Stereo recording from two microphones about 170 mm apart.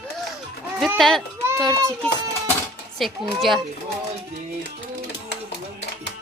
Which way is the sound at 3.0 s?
Centre (ahead or behind).